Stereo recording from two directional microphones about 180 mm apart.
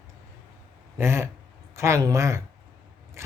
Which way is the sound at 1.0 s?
15° right (ahead or behind).